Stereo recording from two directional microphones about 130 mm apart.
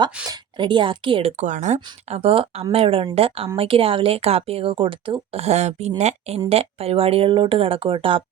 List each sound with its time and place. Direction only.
0.3 s speech: 35° right (ahead or behind)
1.4 s speech: 65° right (ahead or behind); by 8.2 s 40° right (ahead or behind)